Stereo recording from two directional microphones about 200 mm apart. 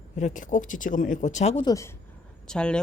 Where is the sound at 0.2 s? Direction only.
40° left (ahead or behind).